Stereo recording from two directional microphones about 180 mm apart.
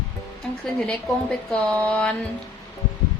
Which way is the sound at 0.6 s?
5° left (ahead or behind).